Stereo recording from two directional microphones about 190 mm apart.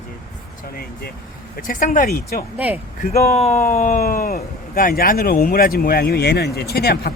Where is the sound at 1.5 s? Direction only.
45° left (ahead or behind).